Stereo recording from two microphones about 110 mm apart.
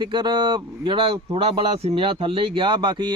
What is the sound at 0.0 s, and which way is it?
Speech, 45° right (ahead or behind).